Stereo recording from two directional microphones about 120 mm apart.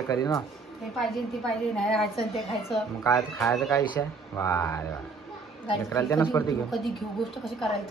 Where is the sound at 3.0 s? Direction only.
30° left (ahead or behind).